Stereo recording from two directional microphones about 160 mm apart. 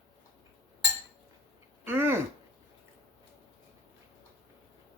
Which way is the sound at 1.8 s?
15° right (ahead or behind).